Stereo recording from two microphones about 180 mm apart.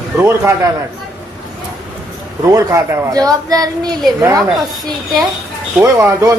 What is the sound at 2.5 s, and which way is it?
Speech, 20° right (ahead or behind).